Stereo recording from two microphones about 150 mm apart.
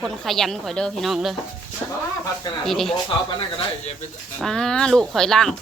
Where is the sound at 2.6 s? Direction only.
Centre (ahead or behind).